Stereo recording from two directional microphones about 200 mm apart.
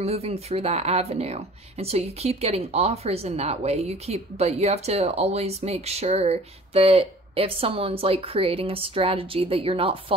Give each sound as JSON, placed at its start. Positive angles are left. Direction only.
{"t": 0.0, "sound": "speech", "side_deg": -30}